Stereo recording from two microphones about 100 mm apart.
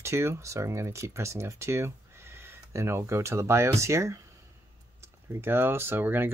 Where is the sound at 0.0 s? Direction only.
25° right (ahead or behind).